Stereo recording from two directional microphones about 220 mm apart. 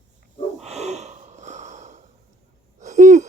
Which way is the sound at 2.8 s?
35° right (ahead or behind).